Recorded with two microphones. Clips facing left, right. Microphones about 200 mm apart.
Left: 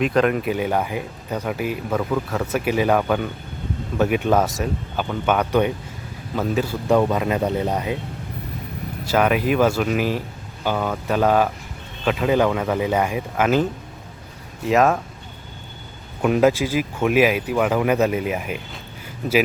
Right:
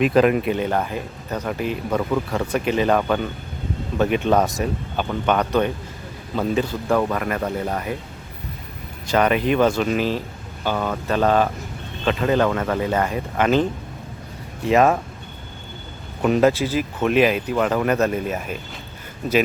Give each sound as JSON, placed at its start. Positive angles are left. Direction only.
{"t": 0.0, "sound": "speech", "side_deg": -5}
{"t": 0.5, "sound": "speech", "side_deg": 10}
{"t": 6.8, "sound": "speech", "side_deg": 15}
{"t": 9.0, "sound": "speech", "side_deg": 5}
{"t": 16.2, "sound": "speech", "side_deg": 5}